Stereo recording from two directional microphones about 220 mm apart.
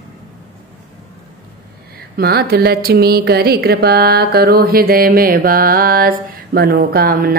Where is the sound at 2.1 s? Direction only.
45° right (ahead or behind).